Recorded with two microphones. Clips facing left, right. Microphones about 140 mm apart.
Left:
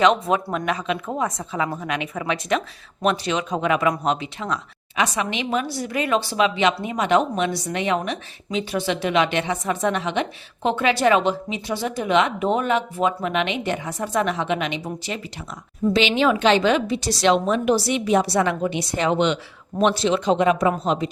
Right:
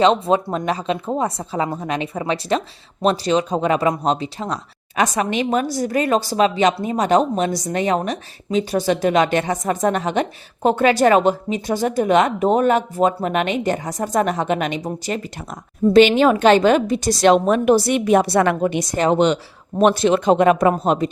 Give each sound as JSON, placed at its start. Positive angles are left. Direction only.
{"t": 0.0, "sound": "a woman's voice", "side_deg": -30}
{"t": 19.8, "sound": "a woman's voice", "side_deg": -50}